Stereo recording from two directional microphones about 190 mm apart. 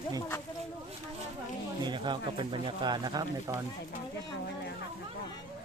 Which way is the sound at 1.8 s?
25° right (ahead or behind).